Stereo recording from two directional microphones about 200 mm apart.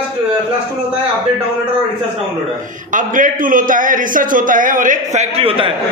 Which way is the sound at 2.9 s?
40° right (ahead or behind).